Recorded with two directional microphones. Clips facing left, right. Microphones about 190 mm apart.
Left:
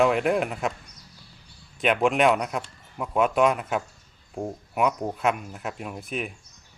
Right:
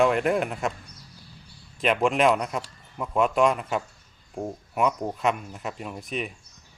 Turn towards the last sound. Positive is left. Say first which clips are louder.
# even
turn(degrees=0)  # may be behind; listen again after turning